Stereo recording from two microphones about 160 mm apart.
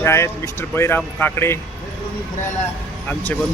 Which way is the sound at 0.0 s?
15° left (ahead or behind).